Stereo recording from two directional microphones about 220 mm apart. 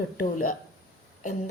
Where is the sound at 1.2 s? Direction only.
35° left (ahead or behind).